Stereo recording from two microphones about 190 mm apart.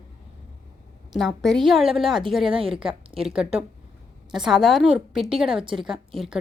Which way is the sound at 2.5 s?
30° right (ahead or behind).